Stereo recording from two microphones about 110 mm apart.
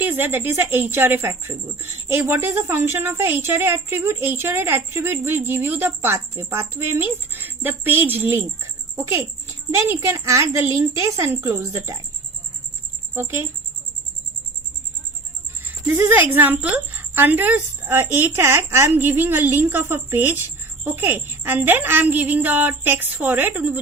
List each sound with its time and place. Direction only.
0.0 s speech: 20° right (ahead or behind)
9.7 s speech: 25° right (ahead or behind)
13.1 s speech: 20° right (ahead or behind)
16.0 s speech: 20° right (ahead or behind)